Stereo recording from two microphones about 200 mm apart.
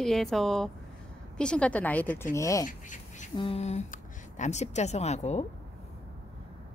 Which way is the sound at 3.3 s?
25° left (ahead or behind).